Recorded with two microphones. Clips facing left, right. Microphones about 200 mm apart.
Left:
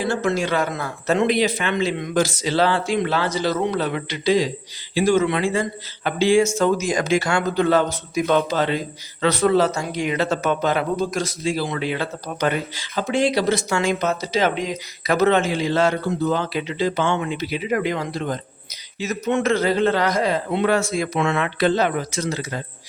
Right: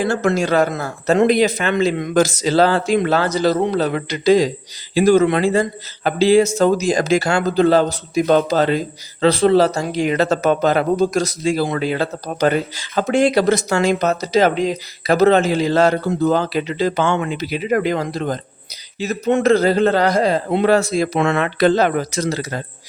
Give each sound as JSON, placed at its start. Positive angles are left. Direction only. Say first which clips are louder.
{"t": 0.0, "sound": "speech", "louder": "right 4 dB", "side_deg": -45}